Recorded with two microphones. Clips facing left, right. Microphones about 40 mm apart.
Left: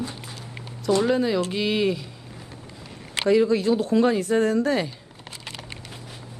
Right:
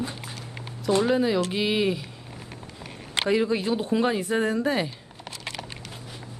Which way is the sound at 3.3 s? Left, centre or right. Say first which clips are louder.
Left 5 dB; centre.